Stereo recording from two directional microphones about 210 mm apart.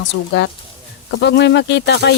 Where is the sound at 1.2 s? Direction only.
55° left (ahead or behind).